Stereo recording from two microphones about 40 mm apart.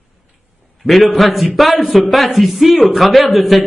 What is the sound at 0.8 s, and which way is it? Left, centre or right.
Speech, centre.